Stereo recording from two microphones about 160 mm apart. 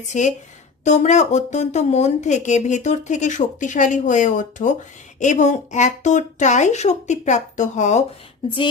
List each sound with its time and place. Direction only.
0.0 s speech: 50° left (ahead or behind)